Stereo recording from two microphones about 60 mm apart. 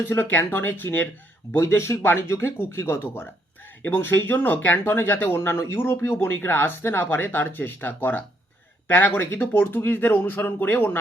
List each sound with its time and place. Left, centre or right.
0.0 s speech: left
1.5 s speech: left
5.4 s speech: left